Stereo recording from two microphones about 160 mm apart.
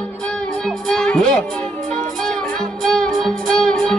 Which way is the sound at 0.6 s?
5° left (ahead or behind).